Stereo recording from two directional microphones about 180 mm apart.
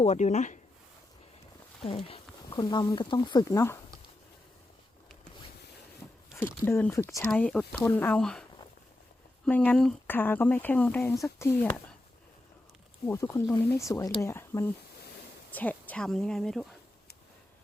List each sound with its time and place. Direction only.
0.0 s speech: 40° left (ahead or behind)
1.8 s speech: 30° left (ahead or behind)
6.3 s speech: 15° left (ahead or behind)
9.5 s speech: 5° left (ahead or behind)
13.1 s speech: 15° left (ahead or behind)